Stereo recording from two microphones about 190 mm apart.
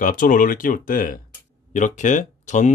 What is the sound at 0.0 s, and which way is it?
Speech, 45° left (ahead or behind).